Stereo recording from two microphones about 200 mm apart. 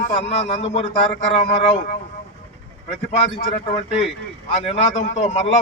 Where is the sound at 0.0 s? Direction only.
30° left (ahead or behind).